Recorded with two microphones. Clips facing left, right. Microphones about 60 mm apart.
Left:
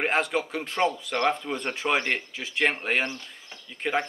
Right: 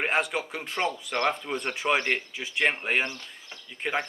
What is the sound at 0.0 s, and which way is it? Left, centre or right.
Speech, centre.